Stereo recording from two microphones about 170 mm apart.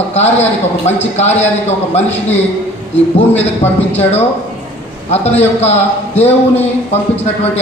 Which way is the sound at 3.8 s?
35° left (ahead or behind).